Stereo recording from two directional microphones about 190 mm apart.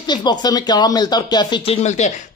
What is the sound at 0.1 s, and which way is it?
Speech, 20° left (ahead or behind).